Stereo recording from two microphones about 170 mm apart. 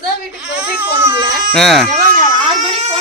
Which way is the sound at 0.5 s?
10° right (ahead or behind).